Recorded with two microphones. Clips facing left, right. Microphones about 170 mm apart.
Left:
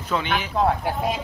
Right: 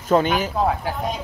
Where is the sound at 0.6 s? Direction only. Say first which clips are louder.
Even; centre (ahead or behind).